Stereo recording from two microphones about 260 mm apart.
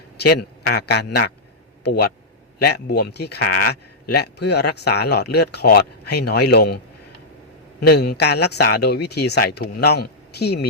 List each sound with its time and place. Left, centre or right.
0.2 s speech: left
7.8 s speech: left